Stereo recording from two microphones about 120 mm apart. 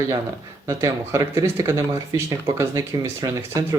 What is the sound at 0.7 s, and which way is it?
Speech, 25° right (ahead or behind).